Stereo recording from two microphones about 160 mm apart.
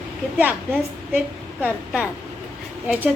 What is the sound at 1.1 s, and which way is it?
A woman's voice, 10° right (ahead or behind).